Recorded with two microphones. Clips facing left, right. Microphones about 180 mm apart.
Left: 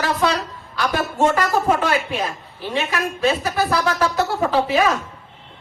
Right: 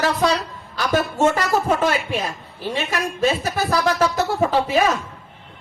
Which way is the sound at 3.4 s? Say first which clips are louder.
Even; 45° right (ahead or behind).